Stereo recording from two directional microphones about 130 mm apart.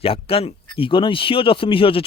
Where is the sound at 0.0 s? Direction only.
45° left (ahead or behind).